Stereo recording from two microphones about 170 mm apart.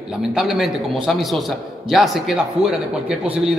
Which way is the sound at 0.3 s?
Centre (ahead or behind).